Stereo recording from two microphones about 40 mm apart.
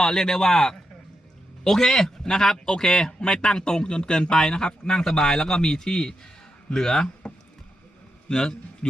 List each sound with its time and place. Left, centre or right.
0.0 s a man's voice: centre
8.3 s a man's voice: centre